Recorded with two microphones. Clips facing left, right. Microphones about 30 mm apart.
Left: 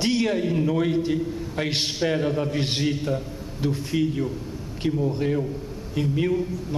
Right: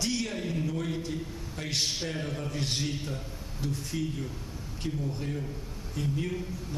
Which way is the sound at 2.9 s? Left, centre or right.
Left.